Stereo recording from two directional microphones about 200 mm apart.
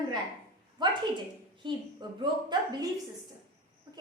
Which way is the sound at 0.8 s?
20° right (ahead or behind).